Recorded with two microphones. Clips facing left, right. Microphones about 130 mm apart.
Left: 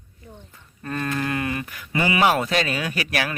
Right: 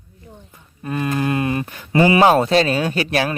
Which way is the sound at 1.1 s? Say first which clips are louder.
Right 7 dB; 25° right (ahead or behind).